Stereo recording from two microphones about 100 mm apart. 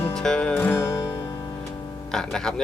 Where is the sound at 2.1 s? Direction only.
5° left (ahead or behind).